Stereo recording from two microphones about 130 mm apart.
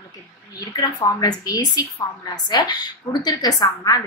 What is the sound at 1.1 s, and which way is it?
A woman's voice, 30° left (ahead or behind).